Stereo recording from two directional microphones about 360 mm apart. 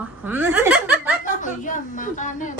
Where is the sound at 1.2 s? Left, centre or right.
Left.